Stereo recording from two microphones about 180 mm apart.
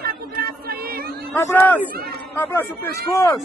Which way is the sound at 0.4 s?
60° right (ahead or behind).